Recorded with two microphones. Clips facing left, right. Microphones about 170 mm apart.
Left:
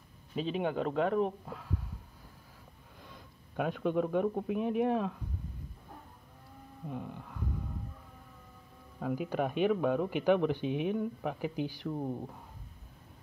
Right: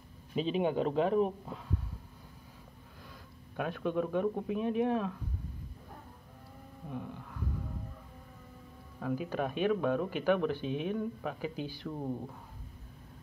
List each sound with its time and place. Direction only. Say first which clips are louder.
0.4 s a man's voice: right 2 dB; centre (ahead or behind)
3.5 s speech: left 2 dB; 15° left (ahead or behind)
6.9 s speech: even; 15° left (ahead or behind)
9.0 s speech: left 1 dB; 15° left (ahead or behind)